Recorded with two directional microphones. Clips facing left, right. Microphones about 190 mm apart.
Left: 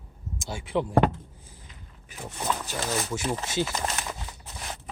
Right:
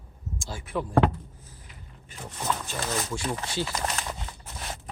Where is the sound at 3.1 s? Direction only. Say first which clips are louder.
Left 2 dB; 20° left (ahead or behind).